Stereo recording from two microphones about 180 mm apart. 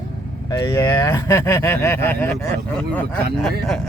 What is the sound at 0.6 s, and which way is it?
Speech, 15° left (ahead or behind).